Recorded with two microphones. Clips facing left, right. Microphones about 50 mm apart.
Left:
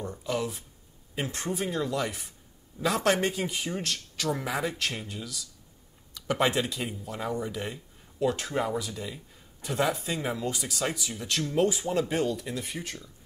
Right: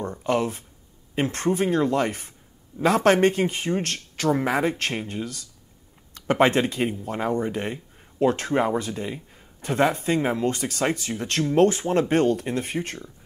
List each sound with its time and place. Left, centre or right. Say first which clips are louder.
0.0 s speech: right 7 dB; right